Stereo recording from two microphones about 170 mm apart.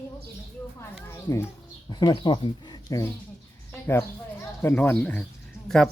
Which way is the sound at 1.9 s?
25° left (ahead or behind).